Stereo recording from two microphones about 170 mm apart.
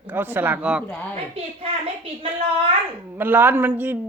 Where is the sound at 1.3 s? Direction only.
35° right (ahead or behind).